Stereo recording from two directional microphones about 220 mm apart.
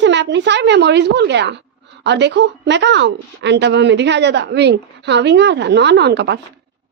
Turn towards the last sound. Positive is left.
turn(degrees=-50)  # may be behind; listen again after turning